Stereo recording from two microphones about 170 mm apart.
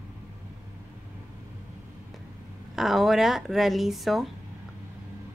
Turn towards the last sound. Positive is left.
turn(degrees=0)  # may be behind; listen again after turning